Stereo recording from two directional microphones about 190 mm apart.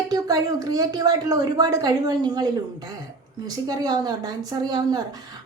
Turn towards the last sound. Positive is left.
turn(degrees=-20)  # may be behind; listen again after turning